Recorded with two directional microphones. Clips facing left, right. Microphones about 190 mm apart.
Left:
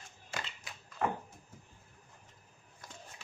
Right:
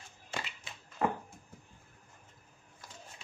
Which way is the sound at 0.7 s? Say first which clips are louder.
Even; 25° right (ahead or behind).